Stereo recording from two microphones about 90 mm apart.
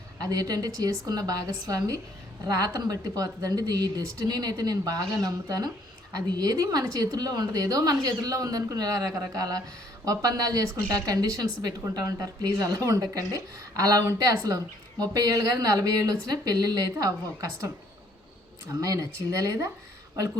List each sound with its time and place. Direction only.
0.2 s a woman's voice: 45° right (ahead or behind)
18.7 s speech: 40° right (ahead or behind)